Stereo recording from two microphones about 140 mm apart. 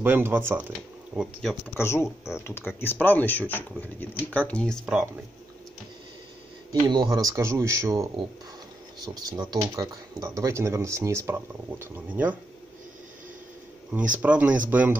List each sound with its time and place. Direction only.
0.0 s speech: 15° right (ahead or behind)
1.8 s speech: 15° left (ahead or behind)
4.9 s speech: 10° right (ahead or behind)
6.7 s speech: 30° right (ahead or behind); by 12.4 s 15° right (ahead or behind)
13.9 s speech: 10° right (ahead or behind)